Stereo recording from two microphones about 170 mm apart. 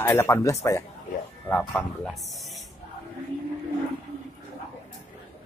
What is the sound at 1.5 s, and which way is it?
Speech, 5° left (ahead or behind).